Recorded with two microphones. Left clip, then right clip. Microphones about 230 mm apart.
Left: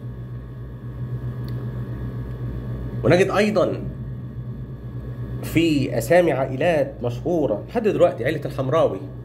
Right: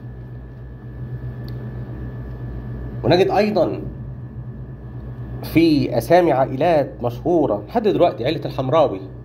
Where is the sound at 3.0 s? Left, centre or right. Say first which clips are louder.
Right 2 dB; centre.